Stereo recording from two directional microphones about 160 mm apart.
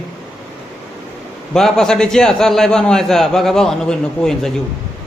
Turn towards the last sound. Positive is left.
turn(degrees=5)  # may be behind; listen again after turning